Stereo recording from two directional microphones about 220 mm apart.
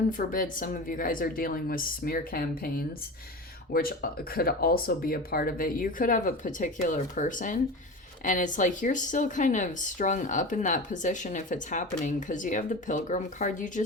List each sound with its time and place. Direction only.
0.1 s speech: 40° left (ahead or behind)